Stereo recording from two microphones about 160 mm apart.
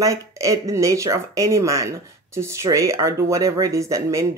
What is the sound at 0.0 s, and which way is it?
Speech, 20° right (ahead or behind).